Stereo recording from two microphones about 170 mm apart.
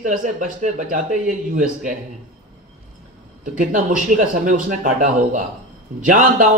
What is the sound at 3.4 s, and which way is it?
A man's voice, 50° right (ahead or behind).